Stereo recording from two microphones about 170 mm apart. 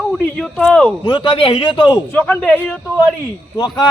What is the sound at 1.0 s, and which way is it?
A man's voice, 30° left (ahead or behind).